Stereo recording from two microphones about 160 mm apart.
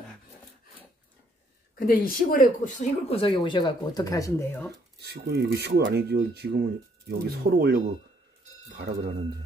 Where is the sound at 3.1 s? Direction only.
35° left (ahead or behind); by 4.5 s 20° left (ahead or behind).